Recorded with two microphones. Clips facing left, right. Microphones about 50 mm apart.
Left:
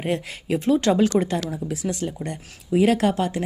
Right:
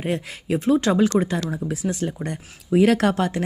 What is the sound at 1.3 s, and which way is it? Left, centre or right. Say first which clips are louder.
Speech: right 1 dB; right.